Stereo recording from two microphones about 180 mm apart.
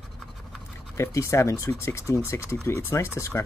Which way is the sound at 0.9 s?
15° left (ahead or behind).